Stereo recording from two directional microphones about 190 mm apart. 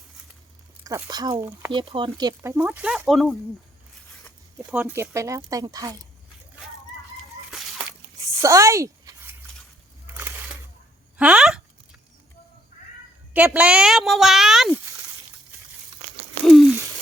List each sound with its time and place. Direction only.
0.9 s speech: 15° right (ahead or behind)
1.7 s speech: 30° right (ahead or behind)
2.6 s a woman's voice: 5° right (ahead or behind)
4.5 s speech: 10° right (ahead or behind)
7.5 s a sound: centre (ahead or behind)
8.2 s a sound: 15° right (ahead or behind)
11.2 s a woman's voice: 5° right (ahead or behind)
13.3 s a woman's voice: 5° right (ahead or behind)
16.4 s a sound: centre (ahead or behind)